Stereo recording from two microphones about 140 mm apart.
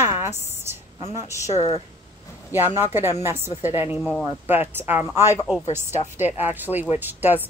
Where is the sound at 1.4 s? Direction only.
50° left (ahead or behind).